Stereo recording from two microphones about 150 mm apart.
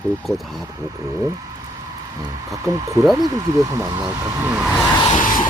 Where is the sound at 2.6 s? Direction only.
20° right (ahead or behind).